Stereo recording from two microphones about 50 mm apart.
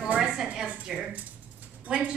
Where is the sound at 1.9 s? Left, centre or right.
Right.